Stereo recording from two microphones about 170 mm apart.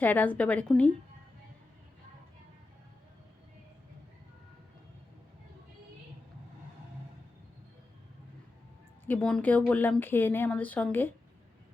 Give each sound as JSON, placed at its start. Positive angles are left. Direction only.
{"t": 0.0, "sound": "speech", "side_deg": 10}
{"t": 9.0, "sound": "speech", "side_deg": 5}